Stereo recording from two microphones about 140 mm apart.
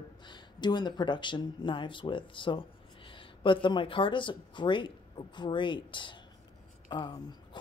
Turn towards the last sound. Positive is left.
turn(degrees=35)  # may be behind; listen again after turning